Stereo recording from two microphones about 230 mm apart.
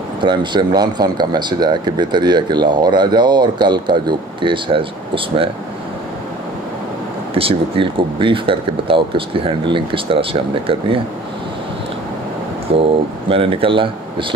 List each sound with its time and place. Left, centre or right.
0.2 s speech: centre
7.3 s speech: right
12.7 s speech: right